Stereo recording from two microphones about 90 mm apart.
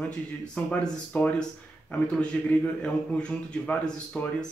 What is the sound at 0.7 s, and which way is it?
Speech, 15° left (ahead or behind).